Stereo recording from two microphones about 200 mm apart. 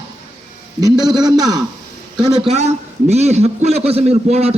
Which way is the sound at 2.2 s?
30° right (ahead or behind).